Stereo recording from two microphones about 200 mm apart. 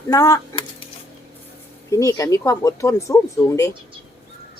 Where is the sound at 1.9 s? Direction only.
15° left (ahead or behind).